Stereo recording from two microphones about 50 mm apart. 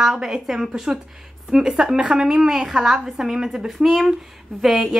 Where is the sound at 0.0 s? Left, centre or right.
Centre.